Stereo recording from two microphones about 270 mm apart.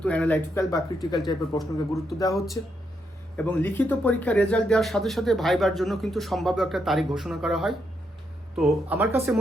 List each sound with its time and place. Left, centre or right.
0.0 s speech: centre
1.9 s speech: centre
3.3 s speech: centre